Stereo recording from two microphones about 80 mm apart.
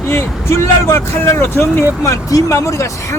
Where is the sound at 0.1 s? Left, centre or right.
Left.